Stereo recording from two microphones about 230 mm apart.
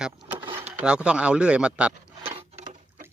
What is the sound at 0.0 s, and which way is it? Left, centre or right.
Speech, centre.